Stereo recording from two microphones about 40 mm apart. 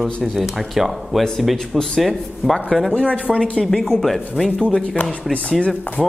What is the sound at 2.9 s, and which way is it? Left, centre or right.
Speech, left.